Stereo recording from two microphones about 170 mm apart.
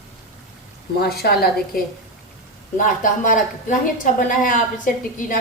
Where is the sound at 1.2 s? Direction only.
65° left (ahead or behind).